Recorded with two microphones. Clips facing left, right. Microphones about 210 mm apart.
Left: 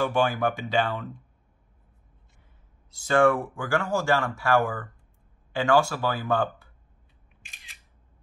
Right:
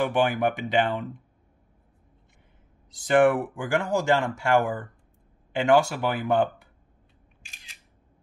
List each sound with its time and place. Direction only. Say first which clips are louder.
0.0 s speech: right 1 dB; 20° right (ahead or behind)
2.9 s speech: right 1 dB; 15° right (ahead or behind)
7.5 s single-lens reflex camera: even; centre (ahead or behind)